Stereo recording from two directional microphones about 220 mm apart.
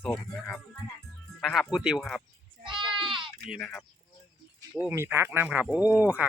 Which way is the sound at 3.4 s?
Centre (ahead or behind).